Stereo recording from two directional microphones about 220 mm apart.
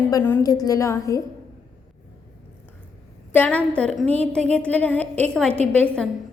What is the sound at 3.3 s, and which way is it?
A woman's voice, 5° left (ahead or behind).